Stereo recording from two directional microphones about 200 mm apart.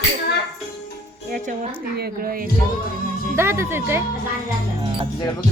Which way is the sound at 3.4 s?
10° right (ahead or behind).